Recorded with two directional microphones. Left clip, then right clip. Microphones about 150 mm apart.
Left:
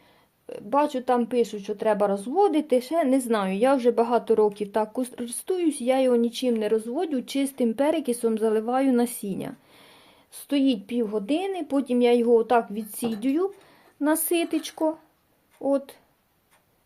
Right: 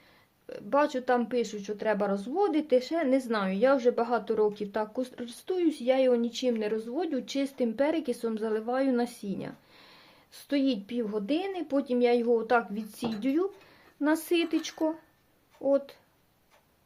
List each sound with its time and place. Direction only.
0.5 s speech: 20° left (ahead or behind)